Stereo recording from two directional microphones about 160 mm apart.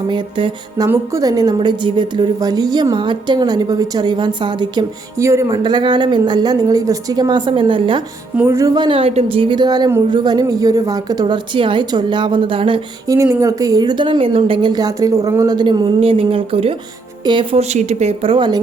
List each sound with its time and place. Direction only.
0.1 s a woman's voice: 30° right (ahead or behind)
8.4 s a woman's voice: 20° right (ahead or behind)
13.1 s a woman's voice: 20° right (ahead or behind)